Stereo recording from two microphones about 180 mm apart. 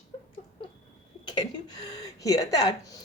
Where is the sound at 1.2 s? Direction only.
25° left (ahead or behind).